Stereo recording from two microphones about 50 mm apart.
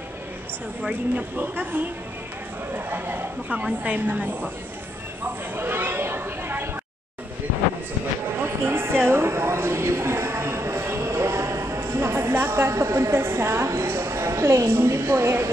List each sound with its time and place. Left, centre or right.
1.1 s a woman's voice: right
3.4 s a woman's voice: right
5.6 s chatter: right
8.5 s a sound: right
13.8 s a woman's voice: right